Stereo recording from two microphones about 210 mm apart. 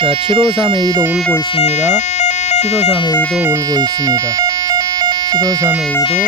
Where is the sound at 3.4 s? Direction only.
15° right (ahead or behind).